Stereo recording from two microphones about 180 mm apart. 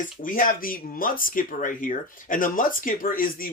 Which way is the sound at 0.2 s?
50° left (ahead or behind).